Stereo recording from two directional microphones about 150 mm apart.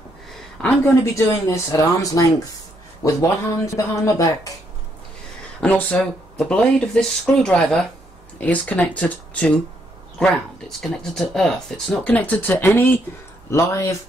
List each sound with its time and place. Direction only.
0.6 s speech: 5° left (ahead or behind)
1.1 s speech: 20° left (ahead or behind)
5.6 s speech: 10° left (ahead or behind)